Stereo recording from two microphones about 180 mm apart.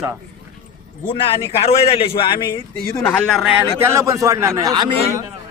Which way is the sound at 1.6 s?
35° left (ahead or behind).